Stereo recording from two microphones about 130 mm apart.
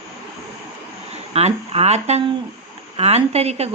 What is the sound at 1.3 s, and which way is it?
A woman's voice, 55° right (ahead or behind).